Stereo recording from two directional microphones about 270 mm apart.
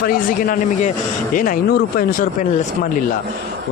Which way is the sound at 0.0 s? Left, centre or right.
Left.